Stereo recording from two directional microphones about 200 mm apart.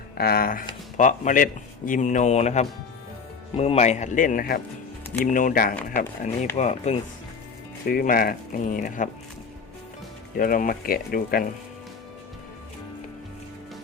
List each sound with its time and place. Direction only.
0.2 s speech: 50° left (ahead or behind)
7.9 s speech: 45° left (ahead or behind)
10.3 s speech: 45° left (ahead or behind)